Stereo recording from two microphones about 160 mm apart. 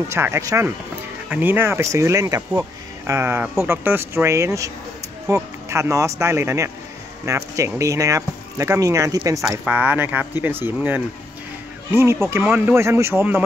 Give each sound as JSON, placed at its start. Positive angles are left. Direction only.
{"t": 0.1, "sound": "speech", "side_deg": -20}
{"t": 9.4, "sound": "speech", "side_deg": -10}